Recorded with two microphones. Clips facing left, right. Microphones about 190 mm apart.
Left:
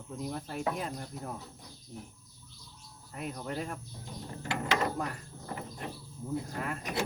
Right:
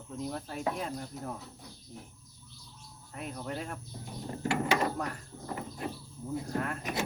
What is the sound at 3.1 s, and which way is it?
Speech, centre (ahead or behind).